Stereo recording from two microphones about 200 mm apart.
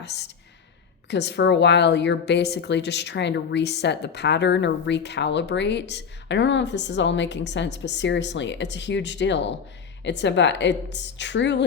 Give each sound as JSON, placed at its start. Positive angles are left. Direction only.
{"t": 0.0, "sound": "a woman's voice", "side_deg": 55}